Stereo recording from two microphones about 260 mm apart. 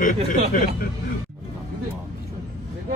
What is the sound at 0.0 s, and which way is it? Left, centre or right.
Speech, left.